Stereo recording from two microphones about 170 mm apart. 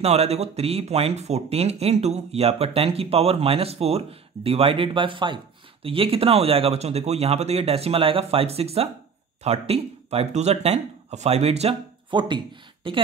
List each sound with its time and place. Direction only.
0.0 s speech: 40° right (ahead or behind)